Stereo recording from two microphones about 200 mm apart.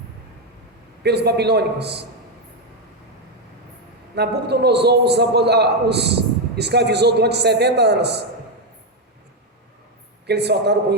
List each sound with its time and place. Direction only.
1.0 s a man's voice: 55° right (ahead or behind)
4.1 s a man's voice: 55° right (ahead or behind)
10.2 s a man's voice: 55° right (ahead or behind)